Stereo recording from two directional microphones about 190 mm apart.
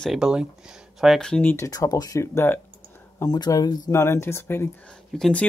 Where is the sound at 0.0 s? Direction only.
Centre (ahead or behind).